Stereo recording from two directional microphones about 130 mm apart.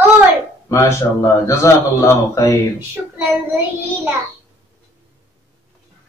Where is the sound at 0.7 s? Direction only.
25° left (ahead or behind).